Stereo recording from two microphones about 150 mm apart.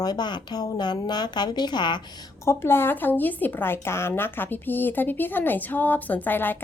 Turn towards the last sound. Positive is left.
turn(degrees=15)  # may be behind; listen again after turning